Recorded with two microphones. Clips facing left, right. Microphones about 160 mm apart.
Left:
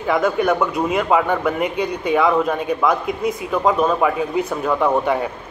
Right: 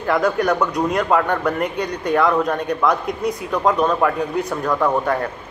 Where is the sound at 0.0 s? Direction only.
Centre (ahead or behind).